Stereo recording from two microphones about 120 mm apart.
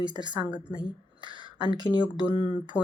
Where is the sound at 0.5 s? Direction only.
40° left (ahead or behind).